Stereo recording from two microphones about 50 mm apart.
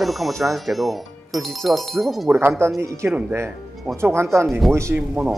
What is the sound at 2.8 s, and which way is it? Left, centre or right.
Speech, right.